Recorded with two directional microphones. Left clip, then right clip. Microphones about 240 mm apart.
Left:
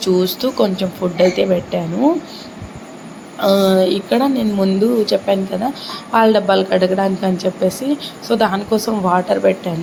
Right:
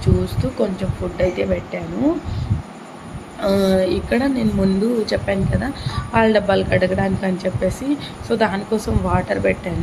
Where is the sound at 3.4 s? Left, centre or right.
Centre.